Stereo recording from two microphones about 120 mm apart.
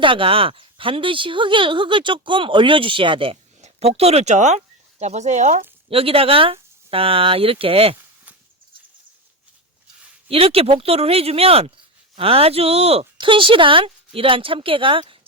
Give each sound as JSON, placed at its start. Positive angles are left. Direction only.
{"t": 0.0, "sound": "speech", "side_deg": -45}
{"t": 3.6, "sound": "speech", "side_deg": -60}
{"t": 5.9, "sound": "speech", "side_deg": -50}
{"t": 10.2, "sound": "speech", "side_deg": -55}
{"t": 13.1, "sound": "speech", "side_deg": -45}